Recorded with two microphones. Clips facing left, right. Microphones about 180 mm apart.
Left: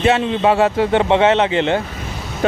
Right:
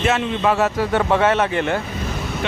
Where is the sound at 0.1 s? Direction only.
30° left (ahead or behind).